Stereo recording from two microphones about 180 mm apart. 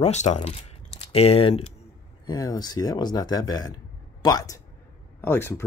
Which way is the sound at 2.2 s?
20° left (ahead or behind).